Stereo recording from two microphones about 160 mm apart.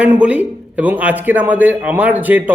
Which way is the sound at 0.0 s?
10° right (ahead or behind).